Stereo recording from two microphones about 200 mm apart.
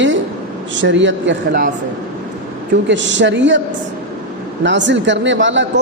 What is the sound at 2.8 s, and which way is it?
Speech, 65° right (ahead or behind).